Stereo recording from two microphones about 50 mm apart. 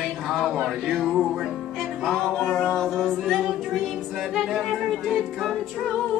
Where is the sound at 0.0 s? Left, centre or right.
Centre.